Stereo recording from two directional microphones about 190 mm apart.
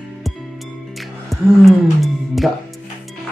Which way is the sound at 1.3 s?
Centre (ahead or behind).